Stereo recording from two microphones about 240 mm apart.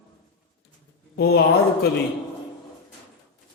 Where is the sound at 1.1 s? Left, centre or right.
Left.